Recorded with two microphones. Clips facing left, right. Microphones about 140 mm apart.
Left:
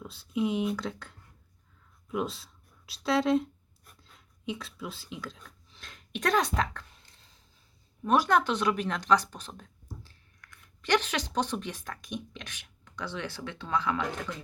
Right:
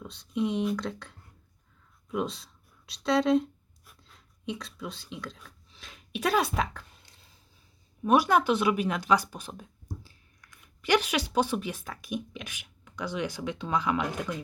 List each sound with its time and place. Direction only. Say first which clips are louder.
0.0 s speech: even; 5° left (ahead or behind)
8.0 s speech: right 2 dB; 10° right (ahead or behind)